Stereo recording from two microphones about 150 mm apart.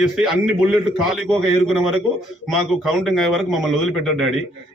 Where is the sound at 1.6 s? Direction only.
Centre (ahead or behind).